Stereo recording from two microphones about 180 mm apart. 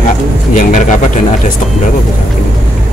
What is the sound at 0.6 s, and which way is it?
Speech, 45° left (ahead or behind).